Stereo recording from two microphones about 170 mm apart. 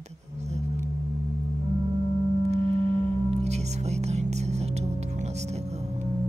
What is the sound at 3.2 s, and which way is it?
Speech, 40° right (ahead or behind).